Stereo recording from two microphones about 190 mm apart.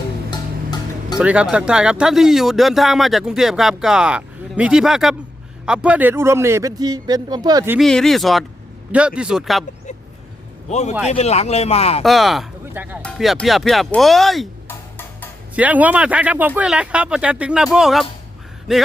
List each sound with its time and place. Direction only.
0.3 s music: 20° left (ahead or behind)
1.2 s a man's voice: 5° right (ahead or behind)
7.8 s speech: centre (ahead or behind)
10.7 s speech: 35° left (ahead or behind)
12.0 s speech: centre (ahead or behind)
13.0 s speech: centre (ahead or behind)
14.7 s music: 10° left (ahead or behind)
15.5 s a man's voice: 10° right (ahead or behind)